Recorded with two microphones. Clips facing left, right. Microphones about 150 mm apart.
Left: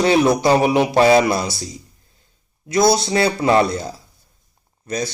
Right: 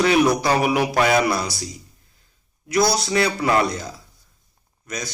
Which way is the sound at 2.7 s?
25° left (ahead or behind).